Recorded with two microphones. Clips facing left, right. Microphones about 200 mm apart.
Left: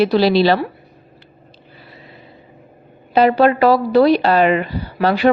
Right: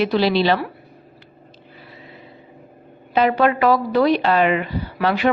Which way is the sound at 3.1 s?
35° left (ahead or behind).